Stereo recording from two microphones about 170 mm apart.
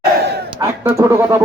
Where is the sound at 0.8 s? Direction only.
15° right (ahead or behind).